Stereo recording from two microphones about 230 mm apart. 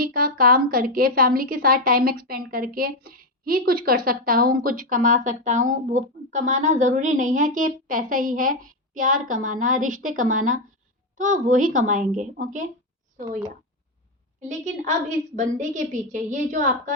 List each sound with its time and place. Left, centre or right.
0.0 s a woman's voice: right
14.4 s a woman's voice: right